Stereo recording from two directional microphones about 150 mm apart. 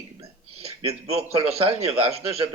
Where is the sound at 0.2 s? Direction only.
40° right (ahead or behind).